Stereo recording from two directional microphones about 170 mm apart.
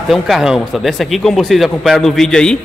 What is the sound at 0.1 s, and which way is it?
Speech, centre (ahead or behind).